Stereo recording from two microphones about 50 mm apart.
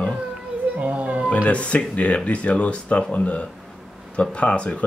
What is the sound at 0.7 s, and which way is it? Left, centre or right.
Speech, right.